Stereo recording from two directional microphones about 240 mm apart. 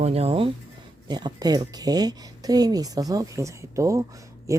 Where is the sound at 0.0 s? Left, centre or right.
Right.